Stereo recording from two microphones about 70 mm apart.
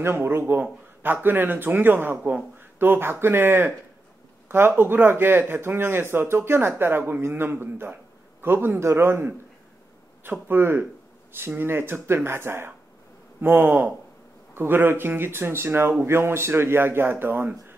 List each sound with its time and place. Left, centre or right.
0.0 s a man's voice: right